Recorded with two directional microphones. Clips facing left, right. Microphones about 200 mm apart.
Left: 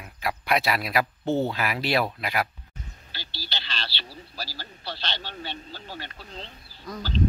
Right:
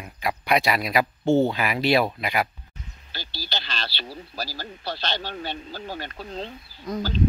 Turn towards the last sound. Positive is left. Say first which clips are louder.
# right 7 dB
turn(degrees=-20)  # may be behind; listen again after turning